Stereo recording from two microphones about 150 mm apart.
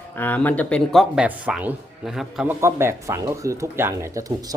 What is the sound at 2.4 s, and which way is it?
Speech, 15° right (ahead or behind).